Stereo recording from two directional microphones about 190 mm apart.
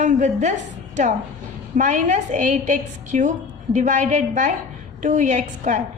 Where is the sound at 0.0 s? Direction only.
40° right (ahead or behind).